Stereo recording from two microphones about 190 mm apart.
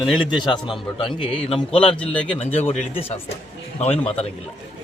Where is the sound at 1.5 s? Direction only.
30° left (ahead or behind).